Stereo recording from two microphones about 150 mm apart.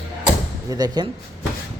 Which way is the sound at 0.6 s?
25° right (ahead or behind).